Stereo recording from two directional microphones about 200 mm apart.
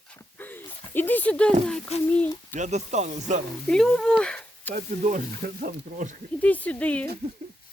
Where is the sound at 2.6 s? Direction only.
35° right (ahead or behind).